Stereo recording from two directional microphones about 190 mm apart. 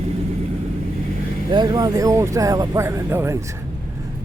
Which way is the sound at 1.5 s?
20° right (ahead or behind).